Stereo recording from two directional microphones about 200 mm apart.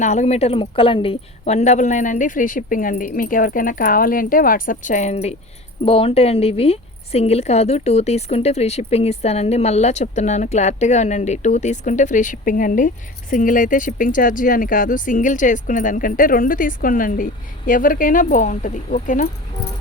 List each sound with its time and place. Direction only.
0.0 s a woman's voice: 35° left (ahead or behind)